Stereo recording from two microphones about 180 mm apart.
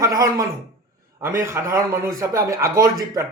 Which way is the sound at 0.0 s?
20° right (ahead or behind).